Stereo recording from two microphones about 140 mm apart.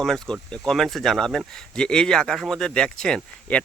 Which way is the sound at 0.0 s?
5° left (ahead or behind).